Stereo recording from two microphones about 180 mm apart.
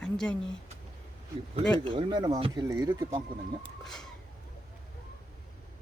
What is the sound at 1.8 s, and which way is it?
Speech, 25° right (ahead or behind).